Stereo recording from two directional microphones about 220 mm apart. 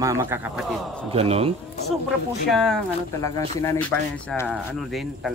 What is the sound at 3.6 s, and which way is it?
A man's voice, 10° left (ahead or behind).